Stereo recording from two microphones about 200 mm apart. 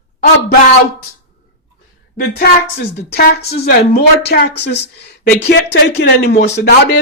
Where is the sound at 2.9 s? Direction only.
55° left (ahead or behind).